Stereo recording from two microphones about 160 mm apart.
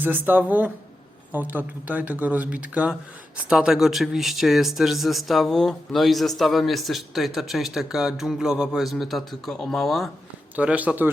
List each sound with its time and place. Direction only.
0.0 s a man's voice: 10° right (ahead or behind)